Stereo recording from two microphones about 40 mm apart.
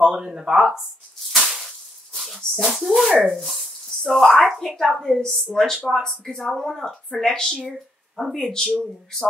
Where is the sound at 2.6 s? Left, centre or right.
Centre.